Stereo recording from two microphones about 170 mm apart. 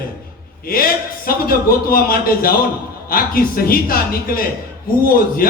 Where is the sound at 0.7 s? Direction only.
60° left (ahead or behind).